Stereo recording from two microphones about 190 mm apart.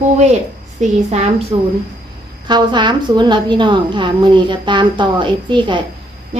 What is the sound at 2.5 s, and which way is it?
A woman's voice, 25° right (ahead or behind).